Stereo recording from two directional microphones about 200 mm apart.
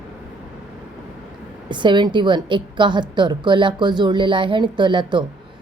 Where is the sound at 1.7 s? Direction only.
25° right (ahead or behind).